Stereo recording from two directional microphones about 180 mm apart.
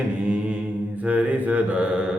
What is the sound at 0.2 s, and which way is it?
Mantra, 5° right (ahead or behind).